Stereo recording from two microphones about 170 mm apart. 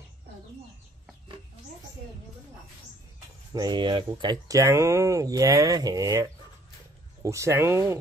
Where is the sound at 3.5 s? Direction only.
25° right (ahead or behind).